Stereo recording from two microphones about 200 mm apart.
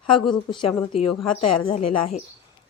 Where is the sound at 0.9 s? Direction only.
35° left (ahead or behind).